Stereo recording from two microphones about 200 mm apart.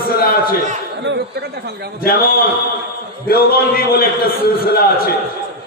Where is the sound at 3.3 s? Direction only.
50° left (ahead or behind).